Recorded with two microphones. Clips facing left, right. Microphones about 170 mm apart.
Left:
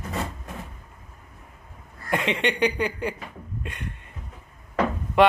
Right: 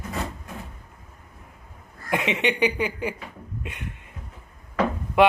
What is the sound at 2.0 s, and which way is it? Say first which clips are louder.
Speech: even; 10° right (ahead or behind).